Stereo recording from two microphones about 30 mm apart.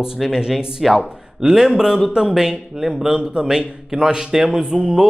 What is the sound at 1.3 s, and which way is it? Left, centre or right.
A man's voice, centre.